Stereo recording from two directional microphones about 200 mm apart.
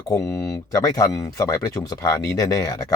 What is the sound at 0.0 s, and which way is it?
Speech, 15° left (ahead or behind).